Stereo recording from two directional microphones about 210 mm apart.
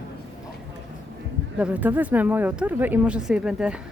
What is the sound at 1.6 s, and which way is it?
Speech, 5° right (ahead or behind).